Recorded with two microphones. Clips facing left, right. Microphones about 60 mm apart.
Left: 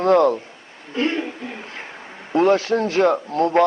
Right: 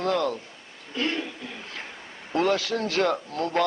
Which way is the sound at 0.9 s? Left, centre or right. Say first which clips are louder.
Left 6 dB; left.